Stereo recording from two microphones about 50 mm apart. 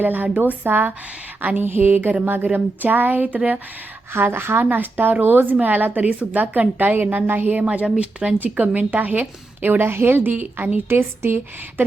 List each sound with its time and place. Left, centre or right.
0.0 s a woman's voice: right
4.1 s a woman's voice: right
4.6 s a woman's voice: right
7.6 s a woman's voice: right
10.8 s a woman's voice: right